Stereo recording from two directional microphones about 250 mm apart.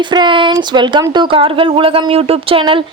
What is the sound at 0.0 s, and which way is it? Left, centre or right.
Speech, centre.